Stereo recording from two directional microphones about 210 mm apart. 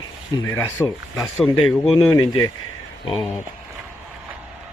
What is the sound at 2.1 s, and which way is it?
Speech, 25° left (ahead or behind).